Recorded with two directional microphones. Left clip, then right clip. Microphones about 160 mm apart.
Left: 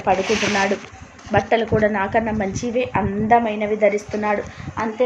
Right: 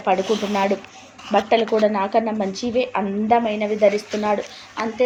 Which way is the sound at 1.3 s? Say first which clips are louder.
Even; 35° right (ahead or behind).